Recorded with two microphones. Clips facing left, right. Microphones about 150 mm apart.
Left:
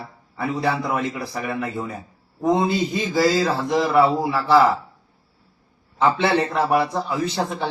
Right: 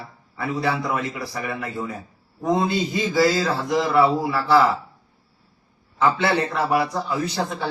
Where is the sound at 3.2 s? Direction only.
10° left (ahead or behind).